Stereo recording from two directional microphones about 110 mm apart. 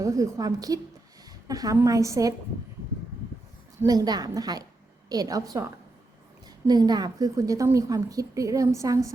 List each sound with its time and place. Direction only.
0.0 s a woman's voice: 30° right (ahead or behind)
3.8 s a woman's voice: 35° right (ahead or behind)
6.7 s a woman's voice: 40° right (ahead or behind)